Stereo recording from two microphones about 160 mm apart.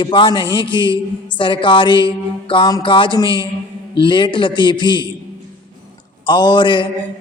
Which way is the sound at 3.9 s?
30° left (ahead or behind).